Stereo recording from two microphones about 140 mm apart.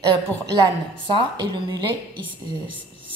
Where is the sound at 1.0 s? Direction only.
35° right (ahead or behind).